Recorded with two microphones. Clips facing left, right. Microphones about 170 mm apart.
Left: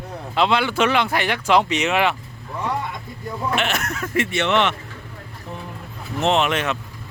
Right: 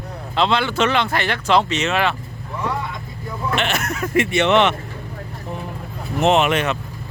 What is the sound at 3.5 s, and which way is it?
Speech, 5° left (ahead or behind).